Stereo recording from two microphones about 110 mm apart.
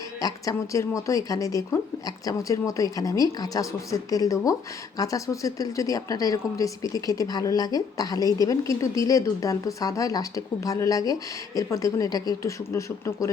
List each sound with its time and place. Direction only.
0.2 s a woman's voice: 35° left (ahead or behind)